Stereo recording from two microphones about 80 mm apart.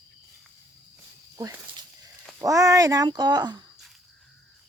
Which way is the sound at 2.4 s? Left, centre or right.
Right.